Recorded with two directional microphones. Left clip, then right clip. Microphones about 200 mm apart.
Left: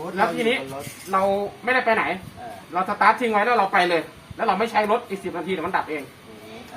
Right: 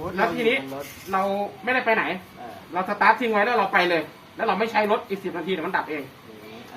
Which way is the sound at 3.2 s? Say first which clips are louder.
Left 2 dB; 15° left (ahead or behind).